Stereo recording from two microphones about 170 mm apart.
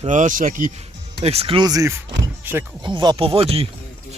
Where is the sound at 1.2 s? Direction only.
35° right (ahead or behind); by 2.7 s 15° right (ahead or behind).